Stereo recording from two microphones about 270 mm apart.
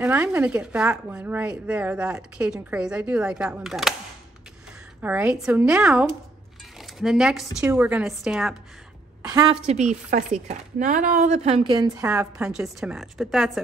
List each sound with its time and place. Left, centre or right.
0.0 s a woman's voice: centre
5.0 s a woman's voice: centre
9.7 s a woman's voice: right; by 13.5 s centre